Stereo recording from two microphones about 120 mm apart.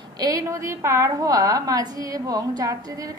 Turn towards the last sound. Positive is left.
turn(degrees=-30)  # may be behind; listen again after turning